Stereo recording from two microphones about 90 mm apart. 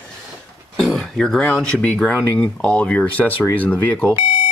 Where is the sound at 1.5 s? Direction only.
10° left (ahead or behind).